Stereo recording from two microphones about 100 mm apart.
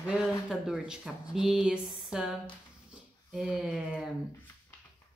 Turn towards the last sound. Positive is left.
turn(degrees=-5)  # may be behind; listen again after turning